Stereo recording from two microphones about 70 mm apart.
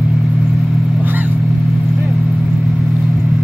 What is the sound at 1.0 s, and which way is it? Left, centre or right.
Vehicle, right.